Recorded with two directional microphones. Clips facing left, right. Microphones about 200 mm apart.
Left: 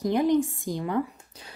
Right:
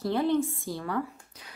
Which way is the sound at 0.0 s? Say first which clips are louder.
Left 3 dB; 15° left (ahead or behind).